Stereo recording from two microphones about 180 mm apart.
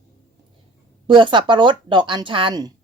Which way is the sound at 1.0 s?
25° right (ahead or behind).